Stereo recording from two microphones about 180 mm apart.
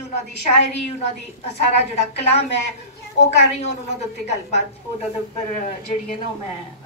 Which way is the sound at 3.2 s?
40° left (ahead or behind).